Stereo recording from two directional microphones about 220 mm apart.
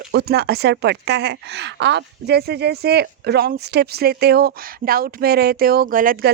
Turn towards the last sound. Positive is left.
turn(degrees=-40)  # may be behind; listen again after turning